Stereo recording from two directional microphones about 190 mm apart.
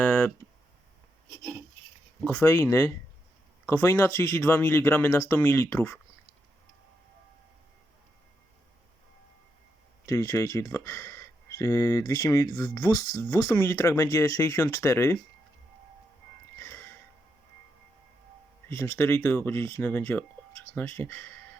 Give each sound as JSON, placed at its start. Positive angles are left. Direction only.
{"t": 0.0, "sound": "a sound", "side_deg": 10}
{"t": 2.2, "sound": "speech", "side_deg": 10}
{"t": 10.1, "sound": "speech", "side_deg": 15}
{"t": 16.6, "sound": "music", "side_deg": 10}
{"t": 18.7, "sound": "speech", "side_deg": 15}